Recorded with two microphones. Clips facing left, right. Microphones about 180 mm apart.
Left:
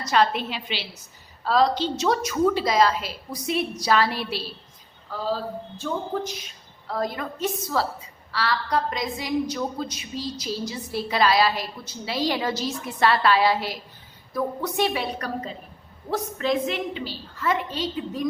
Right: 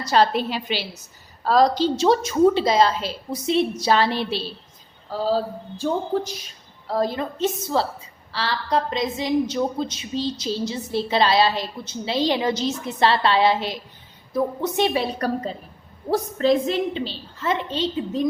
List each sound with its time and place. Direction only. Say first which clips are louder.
0.0 s a woman's voice: right 3 dB; 35° right (ahead or behind)